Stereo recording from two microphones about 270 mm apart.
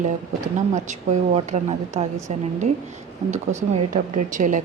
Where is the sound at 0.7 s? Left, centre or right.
Right.